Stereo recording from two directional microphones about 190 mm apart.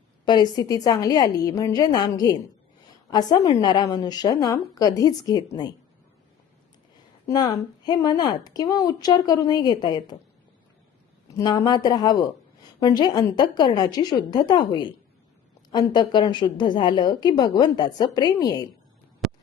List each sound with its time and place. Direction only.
0.3 s a woman's voice: 20° left (ahead or behind)
7.3 s a woman's voice: 20° left (ahead or behind)
11.3 s a woman's voice: 20° left (ahead or behind)